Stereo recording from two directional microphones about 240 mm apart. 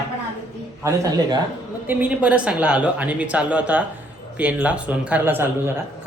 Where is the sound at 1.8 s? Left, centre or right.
Centre.